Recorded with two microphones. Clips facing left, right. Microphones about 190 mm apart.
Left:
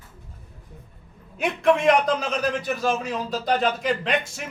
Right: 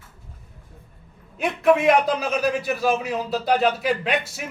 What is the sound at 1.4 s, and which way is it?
A man's voice, 5° right (ahead or behind).